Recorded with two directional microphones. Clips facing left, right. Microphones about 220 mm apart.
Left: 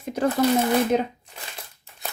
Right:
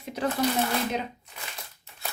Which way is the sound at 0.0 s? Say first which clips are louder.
Left 6 dB; 45° left (ahead or behind).